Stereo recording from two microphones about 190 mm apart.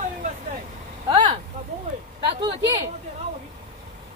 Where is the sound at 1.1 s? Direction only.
30° right (ahead or behind).